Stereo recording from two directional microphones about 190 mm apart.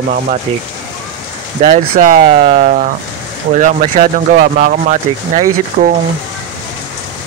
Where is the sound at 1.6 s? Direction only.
40° right (ahead or behind).